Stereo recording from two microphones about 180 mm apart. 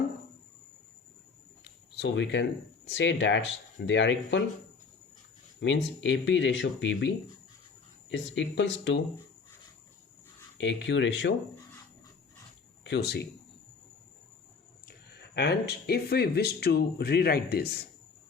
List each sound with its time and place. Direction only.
1.6 s speech: 75° left (ahead or behind)
5.5 s speech: 90° left
8.1 s speech: 85° left
10.6 s speech: 80° left
12.8 s speech: 70° left (ahead or behind)
14.8 s speech: 65° left (ahead or behind)